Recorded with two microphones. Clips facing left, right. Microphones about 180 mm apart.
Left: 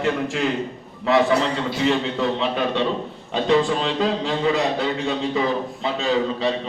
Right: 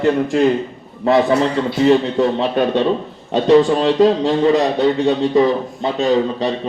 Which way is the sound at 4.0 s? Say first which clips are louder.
Right 8 dB; 40° right (ahead or behind).